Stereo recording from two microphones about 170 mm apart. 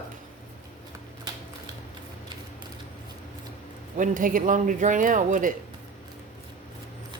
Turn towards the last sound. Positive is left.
turn(degrees=-50)  # may be behind; listen again after turning